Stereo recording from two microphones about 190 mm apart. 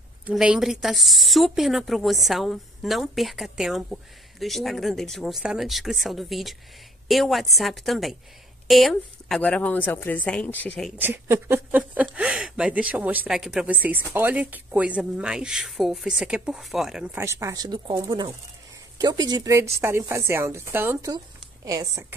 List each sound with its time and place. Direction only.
0.3 s a woman's voice: 5° right (ahead or behind)
11.0 s speech: 10° right (ahead or behind)